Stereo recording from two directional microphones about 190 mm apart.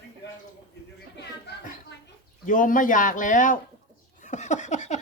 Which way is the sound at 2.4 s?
45° left (ahead or behind).